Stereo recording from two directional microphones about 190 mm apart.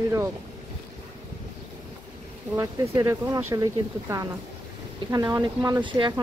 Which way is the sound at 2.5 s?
15° right (ahead or behind).